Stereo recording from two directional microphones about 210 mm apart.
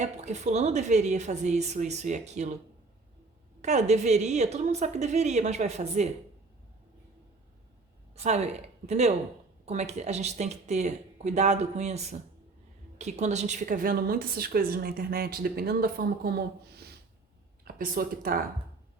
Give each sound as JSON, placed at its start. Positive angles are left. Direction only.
{"t": 0.0, "sound": "speech", "side_deg": -35}
{"t": 3.6, "sound": "speech", "side_deg": -35}
{"t": 8.1, "sound": "a woman's voice", "side_deg": -30}